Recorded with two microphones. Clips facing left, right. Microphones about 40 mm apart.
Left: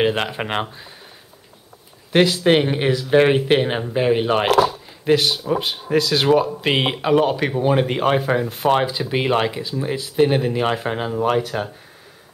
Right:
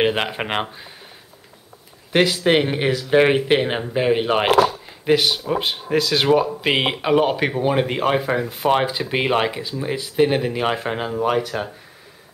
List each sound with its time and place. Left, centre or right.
0.0 s speech: centre
2.1 s speech: centre
7.7 s speech: centre